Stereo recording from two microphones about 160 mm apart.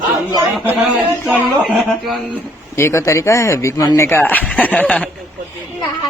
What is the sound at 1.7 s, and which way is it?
Chuckle, centre (ahead or behind).